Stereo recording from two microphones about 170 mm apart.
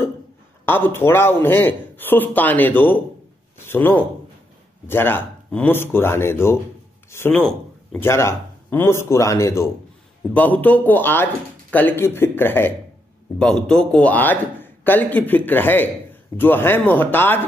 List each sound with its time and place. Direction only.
0.7 s a man's voice: 15° left (ahead or behind)